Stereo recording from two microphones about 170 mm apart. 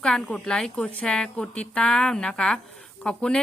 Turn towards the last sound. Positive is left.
turn(degrees=5)  # may be behind; listen again after turning